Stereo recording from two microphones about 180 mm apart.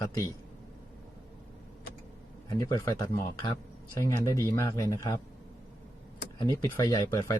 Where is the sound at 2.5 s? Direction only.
15° left (ahead or behind).